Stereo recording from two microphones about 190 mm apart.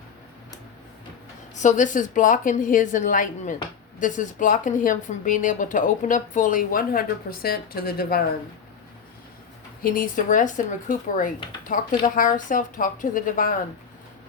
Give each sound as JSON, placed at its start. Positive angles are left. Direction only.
{"t": 1.5, "sound": "speech", "side_deg": 40}
{"t": 9.8, "sound": "speech", "side_deg": 50}